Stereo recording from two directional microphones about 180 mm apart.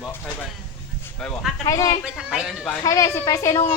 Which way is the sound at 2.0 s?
5° right (ahead or behind).